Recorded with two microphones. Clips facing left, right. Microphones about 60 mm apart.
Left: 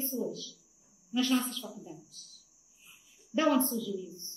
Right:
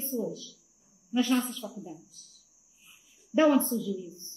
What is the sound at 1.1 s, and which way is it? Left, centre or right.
Speech, centre.